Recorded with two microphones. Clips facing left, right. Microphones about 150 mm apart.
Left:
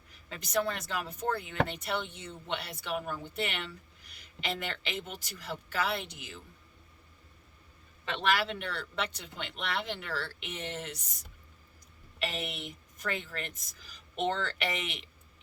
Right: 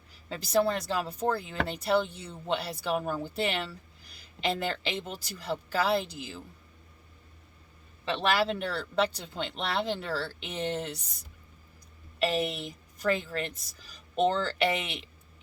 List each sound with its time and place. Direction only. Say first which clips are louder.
0.3 s speech: right 6 dB; 35° right (ahead or behind)
8.0 s speech: right 3 dB; 35° right (ahead or behind)
12.2 s speech: right 8 dB; 35° right (ahead or behind)